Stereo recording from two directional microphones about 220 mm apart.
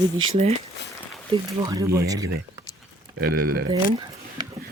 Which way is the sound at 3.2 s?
45° right (ahead or behind).